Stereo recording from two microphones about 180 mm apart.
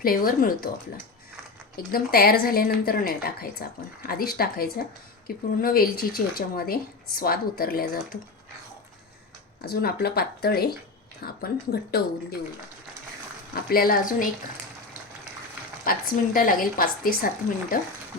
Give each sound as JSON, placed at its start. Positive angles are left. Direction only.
{"t": 0.0, "sound": "a woman's voice", "side_deg": 55}
{"t": 1.7, "sound": "a woman's voice", "side_deg": 55}
{"t": 9.6, "sound": "a woman's voice", "side_deg": 60}
{"t": 13.5, "sound": "a woman's voice", "side_deg": 55}
{"t": 15.8, "sound": "a woman's voice", "side_deg": 50}